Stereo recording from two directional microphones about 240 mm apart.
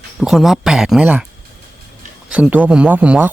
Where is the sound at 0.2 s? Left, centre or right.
Centre.